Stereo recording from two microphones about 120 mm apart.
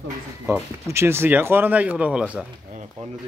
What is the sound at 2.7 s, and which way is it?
Speech, 70° right (ahead or behind).